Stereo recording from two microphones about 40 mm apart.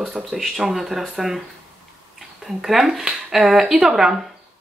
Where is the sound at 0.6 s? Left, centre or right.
Centre.